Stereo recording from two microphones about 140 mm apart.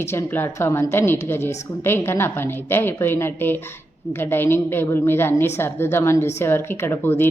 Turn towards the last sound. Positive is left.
turn(degrees=15)  # may be behind; listen again after turning